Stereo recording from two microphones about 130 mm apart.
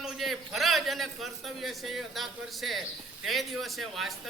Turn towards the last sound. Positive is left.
turn(degrees=0)  # may be behind; listen again after turning